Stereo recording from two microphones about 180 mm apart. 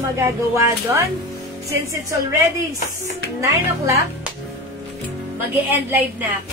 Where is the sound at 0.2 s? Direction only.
15° right (ahead or behind).